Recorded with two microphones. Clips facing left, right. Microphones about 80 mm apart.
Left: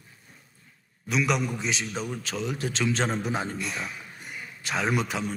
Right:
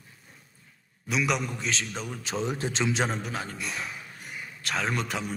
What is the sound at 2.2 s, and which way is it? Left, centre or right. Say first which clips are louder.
Speech: right 1 dB; right.